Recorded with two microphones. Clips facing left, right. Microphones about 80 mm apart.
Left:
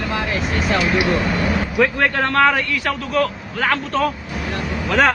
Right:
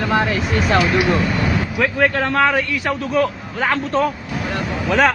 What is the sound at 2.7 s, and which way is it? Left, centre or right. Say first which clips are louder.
Speech: right 1 dB; centre.